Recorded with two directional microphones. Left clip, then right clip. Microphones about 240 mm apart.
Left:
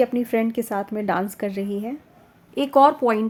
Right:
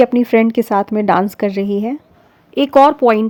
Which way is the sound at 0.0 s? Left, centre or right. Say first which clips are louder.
Right 9 dB; right.